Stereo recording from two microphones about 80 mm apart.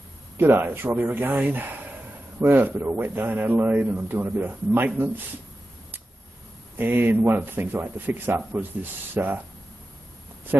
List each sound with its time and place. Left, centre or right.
0.4 s a man's voice: right
6.8 s a man's voice: right